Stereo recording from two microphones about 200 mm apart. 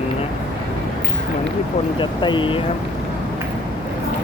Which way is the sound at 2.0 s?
25° left (ahead or behind).